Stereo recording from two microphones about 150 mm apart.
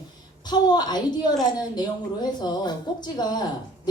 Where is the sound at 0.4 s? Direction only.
30° left (ahead or behind).